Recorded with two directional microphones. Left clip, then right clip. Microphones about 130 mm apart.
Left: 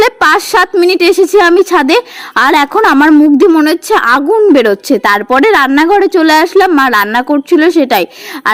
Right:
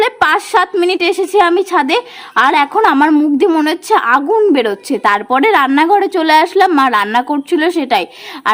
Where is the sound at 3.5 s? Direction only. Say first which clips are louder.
Left 4 dB; 25° left (ahead or behind).